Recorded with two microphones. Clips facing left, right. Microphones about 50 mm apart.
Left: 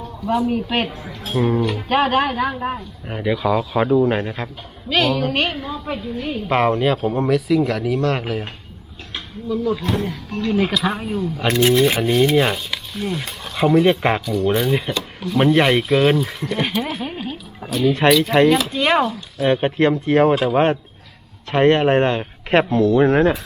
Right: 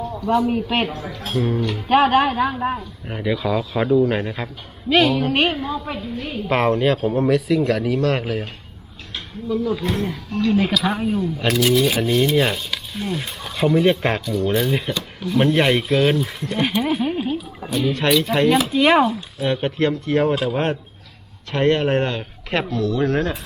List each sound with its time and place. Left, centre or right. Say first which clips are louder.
0.2 s a woman's voice: even; centre
1.4 s speech: left 3 dB; left
1.9 s a woman's voice: right 3 dB; centre
4.2 s a woman's voice: left 1 dB; centre
9.5 s a woman's voice: left 1 dB; centre
11.4 s a woman's voice: left 2 dB; centre
18.2 s speech: left 4 dB; centre
18.4 s a woman's voice: right 1 dB; centre
19.4 s speech: left 4 dB; left